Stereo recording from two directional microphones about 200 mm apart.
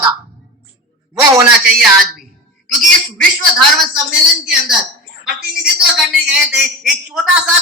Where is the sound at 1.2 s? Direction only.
10° right (ahead or behind).